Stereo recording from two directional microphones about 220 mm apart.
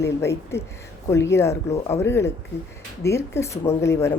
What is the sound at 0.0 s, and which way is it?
Speech, 10° left (ahead or behind).